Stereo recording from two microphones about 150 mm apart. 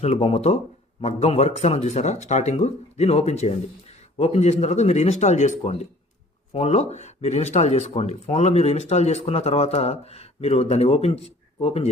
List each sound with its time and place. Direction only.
0.0 s speech: 40° left (ahead or behind)